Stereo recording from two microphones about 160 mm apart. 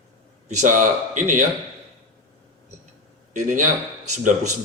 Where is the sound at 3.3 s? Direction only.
50° right (ahead or behind).